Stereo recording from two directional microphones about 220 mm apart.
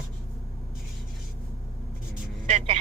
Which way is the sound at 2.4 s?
25° right (ahead or behind).